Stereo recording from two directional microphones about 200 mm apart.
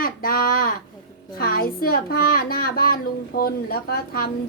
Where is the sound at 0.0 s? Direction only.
45° left (ahead or behind).